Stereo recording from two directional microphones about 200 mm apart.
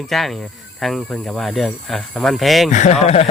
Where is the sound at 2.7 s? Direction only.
35° left (ahead or behind).